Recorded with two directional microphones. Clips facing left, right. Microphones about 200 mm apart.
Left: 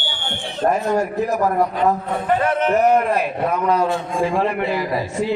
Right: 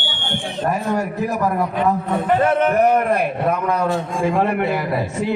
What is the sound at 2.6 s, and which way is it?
A man's voice, 50° right (ahead or behind).